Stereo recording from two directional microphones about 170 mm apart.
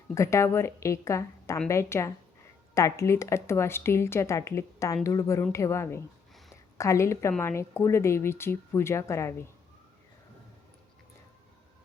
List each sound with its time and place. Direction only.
0.1 s a woman's voice: 15° left (ahead or behind)